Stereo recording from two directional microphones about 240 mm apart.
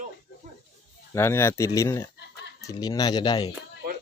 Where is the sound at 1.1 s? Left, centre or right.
Centre.